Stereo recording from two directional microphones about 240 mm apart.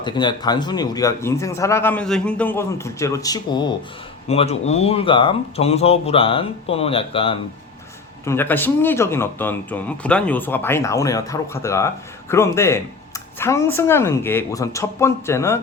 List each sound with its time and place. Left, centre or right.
0.0 s a man's voice: centre
8.2 s a man's voice: centre